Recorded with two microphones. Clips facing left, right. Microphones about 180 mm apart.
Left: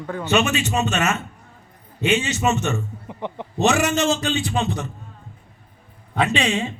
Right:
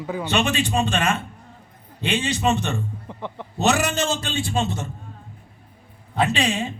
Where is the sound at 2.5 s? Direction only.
35° right (ahead or behind).